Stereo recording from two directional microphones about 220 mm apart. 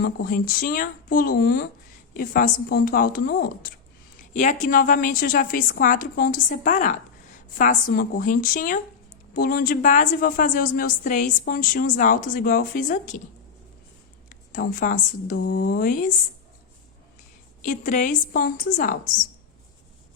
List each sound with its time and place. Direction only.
0.0 s a woman's voice: 40° left (ahead or behind)
14.3 s a woman's voice: 35° left (ahead or behind)
17.6 s a woman's voice: 35° left (ahead or behind)